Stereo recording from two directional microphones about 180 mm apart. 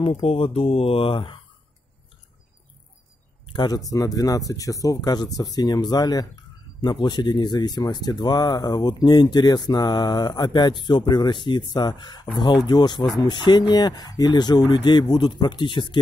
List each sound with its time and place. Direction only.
0.0 s speech: 30° left (ahead or behind)
3.4 s speech: 25° left (ahead or behind)